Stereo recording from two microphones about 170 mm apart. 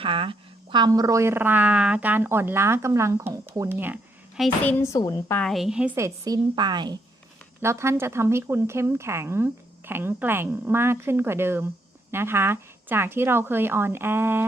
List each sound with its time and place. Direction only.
0.0 s speech: 30° right (ahead or behind); by 4.0 s 10° right (ahead or behind)
4.6 s a woman's voice: 15° left (ahead or behind)
5.4 s a woman's voice: centre (ahead or behind)
6.2 s a woman's voice: 25° right (ahead or behind)